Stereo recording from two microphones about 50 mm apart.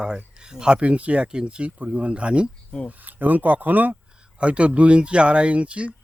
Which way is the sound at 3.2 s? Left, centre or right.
Right.